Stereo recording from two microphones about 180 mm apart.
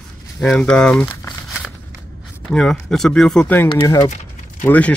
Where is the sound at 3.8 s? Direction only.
20° left (ahead or behind).